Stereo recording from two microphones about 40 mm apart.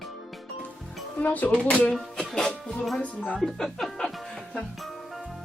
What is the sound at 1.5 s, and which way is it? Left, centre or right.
Speech, left.